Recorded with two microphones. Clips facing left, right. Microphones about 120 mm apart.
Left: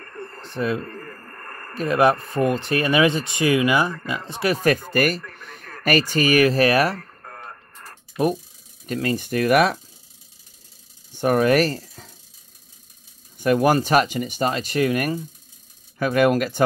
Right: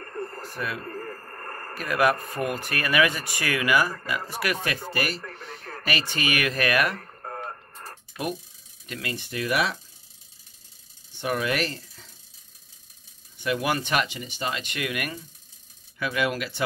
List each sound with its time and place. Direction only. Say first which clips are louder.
0.0 s radio: right 2 dB; 30° right (ahead or behind)
0.4 s speech: left 8 dB; 25° left (ahead or behind)
0.8 s radio: right 1 dB; 30° right (ahead or behind)
1.8 s speech: left 5 dB; 25° left (ahead or behind)
4.6 s speech: left 9 dB; 50° left (ahead or behind)
5.4 s a sound: right 1 dB; 50° left (ahead or behind)
5.9 s speech: left 9 dB; 45° left (ahead or behind)
7.0 s music: right 4 dB; 30° right (ahead or behind)
8.8 s speech: left 10 dB; 40° left (ahead or behind)
11.1 s speech: left 9 dB; 45° left (ahead or behind)
13.4 s speech: left 9 dB; 45° left (ahead or behind)
16.0 s speech: left 9 dB; 45° left (ahead or behind)